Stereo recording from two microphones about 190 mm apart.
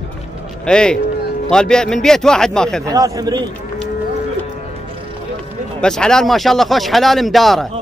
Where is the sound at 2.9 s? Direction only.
20° right (ahead or behind).